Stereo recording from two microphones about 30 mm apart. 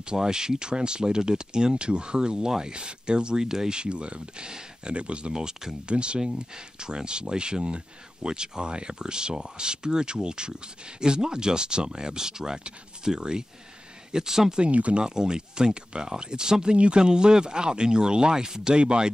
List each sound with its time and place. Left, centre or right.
0.0 s speech: right
4.9 s speech: right
5.3 s speech: centre
5.9 s speech: right; by 14.4 s centre
14.7 s speech: right
15.0 s speech: right
16.7 s speech: right
17.0 s speech: right